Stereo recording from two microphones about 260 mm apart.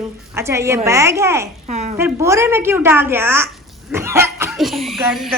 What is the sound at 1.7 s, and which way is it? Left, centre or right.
Speech, right.